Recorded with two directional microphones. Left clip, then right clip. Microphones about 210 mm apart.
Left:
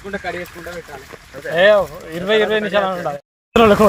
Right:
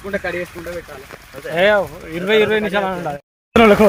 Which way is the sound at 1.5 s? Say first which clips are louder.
Left 2 dB; centre (ahead or behind).